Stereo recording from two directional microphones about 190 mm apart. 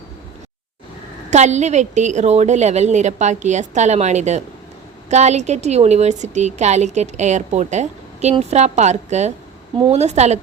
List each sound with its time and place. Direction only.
1.3 s a woman's voice: 35° right (ahead or behind)